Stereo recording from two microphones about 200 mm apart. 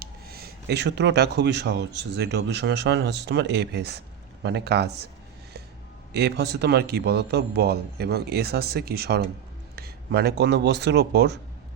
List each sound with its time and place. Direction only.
0.0 s speech: 50° right (ahead or behind)
6.1 s speech: 55° right (ahead or behind)